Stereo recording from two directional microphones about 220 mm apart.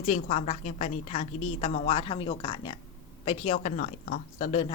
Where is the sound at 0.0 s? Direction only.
30° left (ahead or behind).